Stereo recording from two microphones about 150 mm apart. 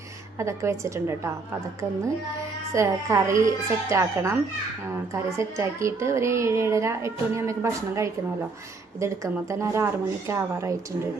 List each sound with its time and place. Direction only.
0.3 s a woman's voice: 20° right (ahead or behind)
2.7 s a woman's voice: 20° right (ahead or behind)
5.4 s a woman's voice: 20° right (ahead or behind)